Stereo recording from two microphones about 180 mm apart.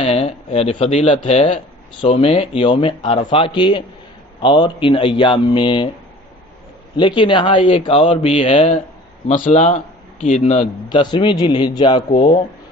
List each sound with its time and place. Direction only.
0.0 s a man's voice: 35° left (ahead or behind)
7.0 s a man's voice: 25° left (ahead or behind)
10.9 s a man's voice: 25° left (ahead or behind)